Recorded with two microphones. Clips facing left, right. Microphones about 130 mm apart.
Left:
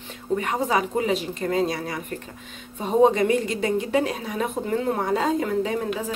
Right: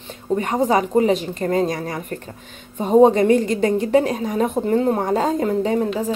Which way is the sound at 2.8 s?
30° right (ahead or behind).